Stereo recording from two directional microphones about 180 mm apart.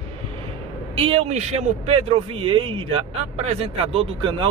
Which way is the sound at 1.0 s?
35° right (ahead or behind).